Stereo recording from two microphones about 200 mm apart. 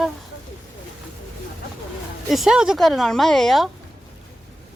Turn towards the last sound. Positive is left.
turn(degrees=0)  # may be behind; listen again after turning